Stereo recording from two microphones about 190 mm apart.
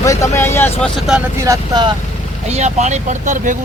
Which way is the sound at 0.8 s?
Centre (ahead or behind).